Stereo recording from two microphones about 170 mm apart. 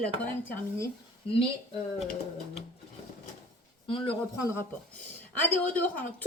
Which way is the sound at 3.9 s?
30° left (ahead or behind).